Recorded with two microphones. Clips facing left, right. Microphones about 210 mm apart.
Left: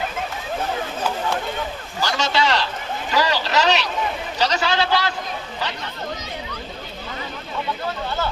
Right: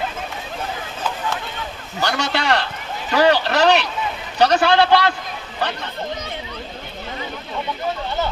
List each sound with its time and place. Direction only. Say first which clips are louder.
2.0 s a man's voice: even; 60° right (ahead or behind)